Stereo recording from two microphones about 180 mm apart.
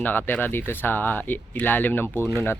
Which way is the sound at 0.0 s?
10° left (ahead or behind).